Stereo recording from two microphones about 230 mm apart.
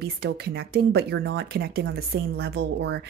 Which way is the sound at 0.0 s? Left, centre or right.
Right.